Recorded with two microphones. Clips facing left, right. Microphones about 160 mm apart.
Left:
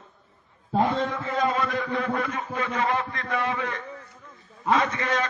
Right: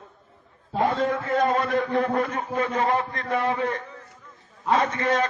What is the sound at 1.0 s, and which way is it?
A man's voice, 55° right (ahead or behind).